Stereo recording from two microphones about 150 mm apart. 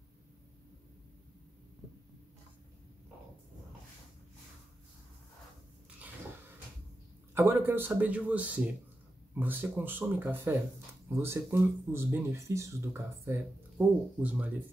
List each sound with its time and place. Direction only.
7.3 s speech: 15° right (ahead or behind)